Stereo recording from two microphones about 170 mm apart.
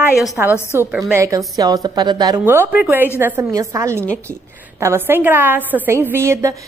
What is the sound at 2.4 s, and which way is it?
A woman's voice, 15° right (ahead or behind).